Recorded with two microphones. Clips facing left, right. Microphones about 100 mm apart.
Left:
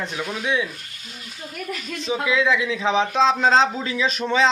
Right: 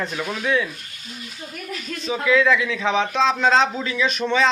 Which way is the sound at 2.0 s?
15° left (ahead or behind).